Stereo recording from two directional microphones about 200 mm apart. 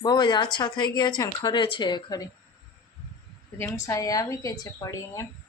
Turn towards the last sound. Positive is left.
turn(degrees=15)  # may be behind; listen again after turning